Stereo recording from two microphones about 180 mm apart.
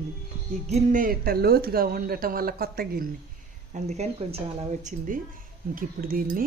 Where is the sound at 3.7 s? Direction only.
40° right (ahead or behind).